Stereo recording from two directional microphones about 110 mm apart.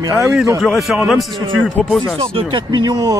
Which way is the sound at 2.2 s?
55° right (ahead or behind).